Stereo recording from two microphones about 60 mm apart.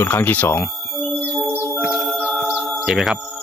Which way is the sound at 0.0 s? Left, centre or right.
Left.